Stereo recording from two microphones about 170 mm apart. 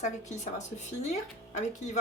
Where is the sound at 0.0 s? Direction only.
45° left (ahead or behind).